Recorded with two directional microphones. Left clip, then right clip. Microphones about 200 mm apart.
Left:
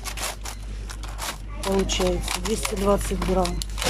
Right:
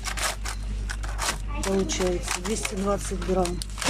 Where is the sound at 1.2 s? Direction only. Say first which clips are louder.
Even; 5° left (ahead or behind).